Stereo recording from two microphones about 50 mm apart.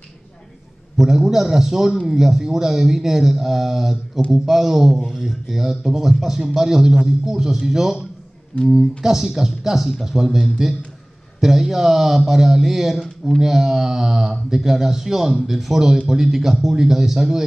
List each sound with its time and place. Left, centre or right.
0.9 s speech: centre
8.5 s speech: left
9.0 s speech: centre